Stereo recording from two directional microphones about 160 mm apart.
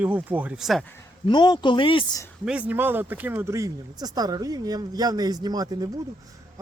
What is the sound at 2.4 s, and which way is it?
Speech, 10° right (ahead or behind).